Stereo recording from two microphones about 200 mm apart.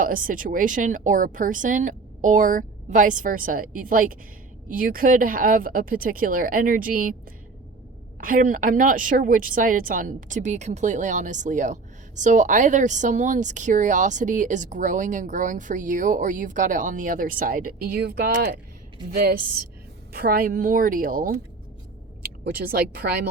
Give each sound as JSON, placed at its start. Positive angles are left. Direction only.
{"t": 0.0, "sound": "speech", "side_deg": -45}
{"t": 8.2, "sound": "speech", "side_deg": -45}